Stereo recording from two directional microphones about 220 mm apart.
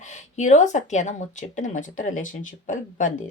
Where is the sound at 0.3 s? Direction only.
35° left (ahead or behind).